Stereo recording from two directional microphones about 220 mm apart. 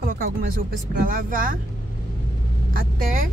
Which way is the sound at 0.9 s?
40° right (ahead or behind).